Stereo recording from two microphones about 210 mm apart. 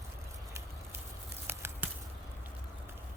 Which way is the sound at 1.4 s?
10° right (ahead or behind).